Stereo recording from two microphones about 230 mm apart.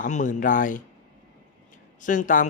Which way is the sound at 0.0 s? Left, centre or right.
Left.